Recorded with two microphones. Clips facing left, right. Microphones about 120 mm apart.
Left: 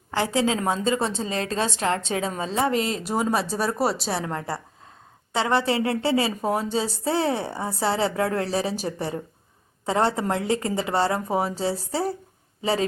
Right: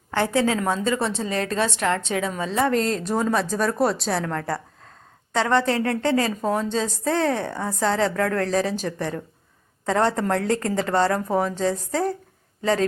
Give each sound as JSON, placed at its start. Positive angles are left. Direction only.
{"t": 0.2, "sound": "a woman's voice", "side_deg": 25}
{"t": 2.6, "sound": "a woman's voice", "side_deg": 10}